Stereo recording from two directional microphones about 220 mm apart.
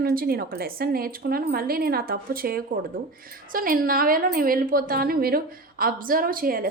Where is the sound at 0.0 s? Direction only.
40° right (ahead or behind).